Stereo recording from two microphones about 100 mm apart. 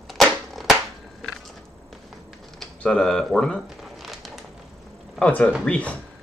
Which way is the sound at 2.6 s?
5° left (ahead or behind).